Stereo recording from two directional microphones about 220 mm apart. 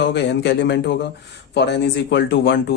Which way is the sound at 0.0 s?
50° left (ahead or behind).